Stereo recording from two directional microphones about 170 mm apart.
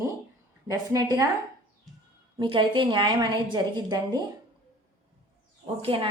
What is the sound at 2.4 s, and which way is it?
A woman's voice, 30° right (ahead or behind).